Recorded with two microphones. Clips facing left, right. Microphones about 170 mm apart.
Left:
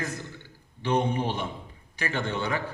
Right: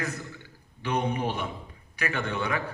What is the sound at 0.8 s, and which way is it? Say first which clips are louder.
A man's voice: left 2 dB; 25° left (ahead or behind).